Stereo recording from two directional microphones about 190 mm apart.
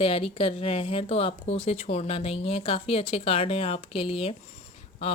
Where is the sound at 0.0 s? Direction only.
30° left (ahead or behind).